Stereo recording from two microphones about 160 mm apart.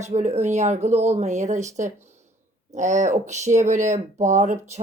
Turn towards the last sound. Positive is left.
turn(degrees=-45)  # may be behind; listen again after turning